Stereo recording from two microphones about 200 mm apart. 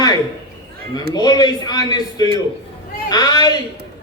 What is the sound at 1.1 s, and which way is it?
A man's voice, 20° left (ahead or behind).